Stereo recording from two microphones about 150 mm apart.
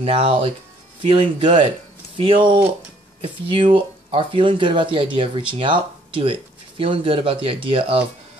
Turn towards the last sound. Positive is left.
turn(degrees=-35)  # may be behind; listen again after turning